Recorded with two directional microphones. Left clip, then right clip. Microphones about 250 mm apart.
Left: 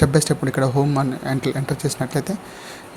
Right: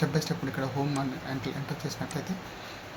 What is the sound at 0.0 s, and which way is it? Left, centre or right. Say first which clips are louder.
A man's voice: left 12 dB; left.